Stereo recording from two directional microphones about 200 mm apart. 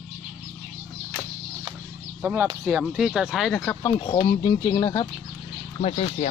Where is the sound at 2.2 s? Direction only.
10° right (ahead or behind).